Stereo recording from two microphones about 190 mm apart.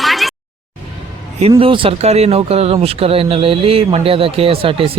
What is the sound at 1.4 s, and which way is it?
Speech, 30° right (ahead or behind).